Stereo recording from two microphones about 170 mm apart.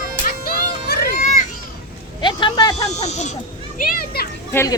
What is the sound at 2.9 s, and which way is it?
Speech, 40° left (ahead or behind).